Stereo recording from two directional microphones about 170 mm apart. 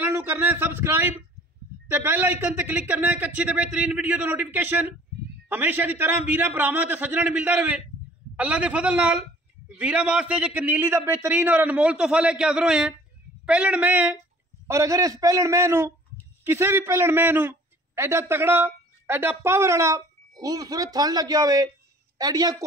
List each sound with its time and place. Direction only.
0.0 s a man's voice: 10° right (ahead or behind)